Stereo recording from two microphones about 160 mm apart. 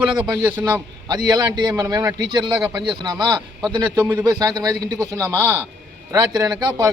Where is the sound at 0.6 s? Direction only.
25° right (ahead or behind).